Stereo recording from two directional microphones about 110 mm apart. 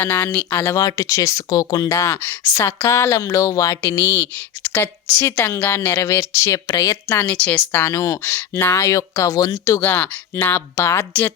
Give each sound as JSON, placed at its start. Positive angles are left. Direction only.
{"t": 0.0, "sound": "speech", "side_deg": 15}
{"t": 0.6, "sound": "a woman's voice", "side_deg": 30}
{"t": 2.2, "sound": "a woman's voice", "side_deg": 15}
{"t": 7.3, "sound": "a woman's voice", "side_deg": 10}